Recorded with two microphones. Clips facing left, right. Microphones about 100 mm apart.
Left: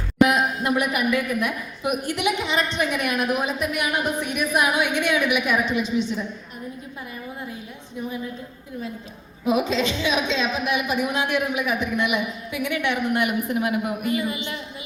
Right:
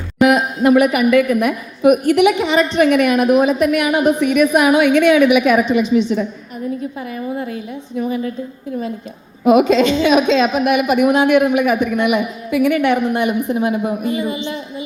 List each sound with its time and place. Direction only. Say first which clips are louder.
0.3 s a woman's voice: right 9 dB; 85° right
7.3 s a woman's voice: right 10 dB; 85° right
9.4 s a woman's voice: right 10 dB; 70° right (ahead or behind); by 13.0 s 50° right (ahead or behind)
13.1 s a man's voice: right 6 dB; 30° right (ahead or behind)